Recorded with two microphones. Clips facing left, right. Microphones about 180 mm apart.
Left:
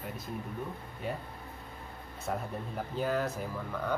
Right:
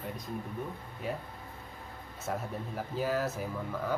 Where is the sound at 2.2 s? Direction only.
Centre (ahead or behind).